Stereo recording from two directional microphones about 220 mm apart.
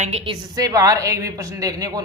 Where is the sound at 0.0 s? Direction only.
30° right (ahead or behind).